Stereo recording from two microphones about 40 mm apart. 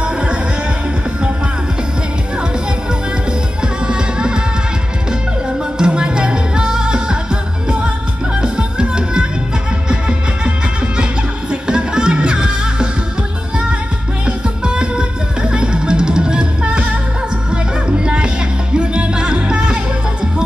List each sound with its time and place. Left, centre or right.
0.0 s music: right
3.6 s music: right
5.8 s music: right
8.4 s music: right
11.6 s music: right
14.2 s music: right